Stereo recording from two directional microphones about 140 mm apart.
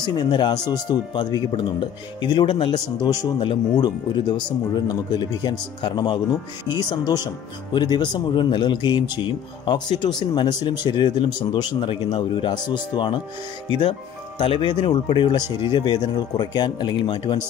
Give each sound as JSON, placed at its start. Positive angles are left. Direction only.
{"t": 0.0, "sound": "speech", "side_deg": 30}
{"t": 14.4, "sound": "speech", "side_deg": 40}